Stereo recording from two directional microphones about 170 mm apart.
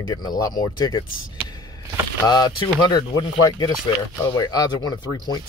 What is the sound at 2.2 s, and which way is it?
Speech, 25° left (ahead or behind).